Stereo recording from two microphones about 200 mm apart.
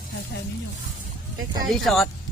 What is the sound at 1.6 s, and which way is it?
Speech, centre (ahead or behind).